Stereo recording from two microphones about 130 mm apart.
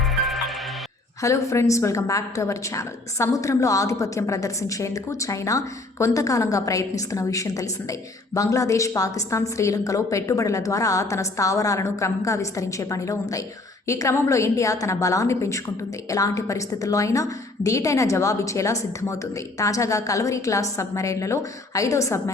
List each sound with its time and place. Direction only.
1.2 s a woman's voice: 20° left (ahead or behind)